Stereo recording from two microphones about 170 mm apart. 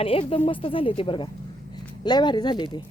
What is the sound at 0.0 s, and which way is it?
Speech, 35° left (ahead or behind).